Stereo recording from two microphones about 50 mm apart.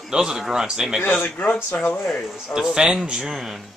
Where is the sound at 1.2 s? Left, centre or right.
Left.